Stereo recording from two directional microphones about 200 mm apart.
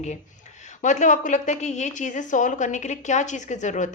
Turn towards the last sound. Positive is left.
turn(degrees=40)  # may be behind; listen again after turning